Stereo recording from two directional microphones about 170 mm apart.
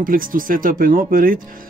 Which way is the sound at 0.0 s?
55° right (ahead or behind).